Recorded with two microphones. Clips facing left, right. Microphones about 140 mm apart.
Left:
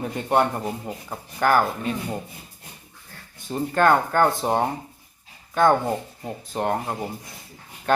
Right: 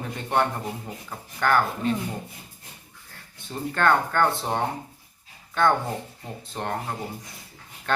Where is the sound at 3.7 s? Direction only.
15° left (ahead or behind).